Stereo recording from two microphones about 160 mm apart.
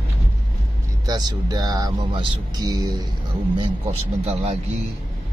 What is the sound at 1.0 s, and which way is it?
Speech, 25° right (ahead or behind).